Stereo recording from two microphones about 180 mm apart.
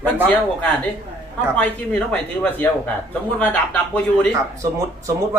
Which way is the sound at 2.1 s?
5° left (ahead or behind).